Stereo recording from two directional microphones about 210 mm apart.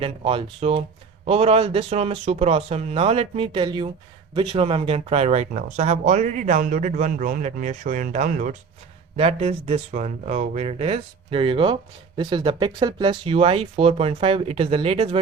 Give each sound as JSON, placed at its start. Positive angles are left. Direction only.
{"t": 0.0, "sound": "speech", "side_deg": -25}